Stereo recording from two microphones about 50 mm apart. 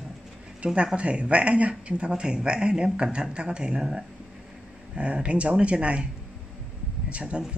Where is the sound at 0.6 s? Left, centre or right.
Right.